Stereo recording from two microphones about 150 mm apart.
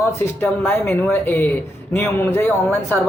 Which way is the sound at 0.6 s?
15° left (ahead or behind).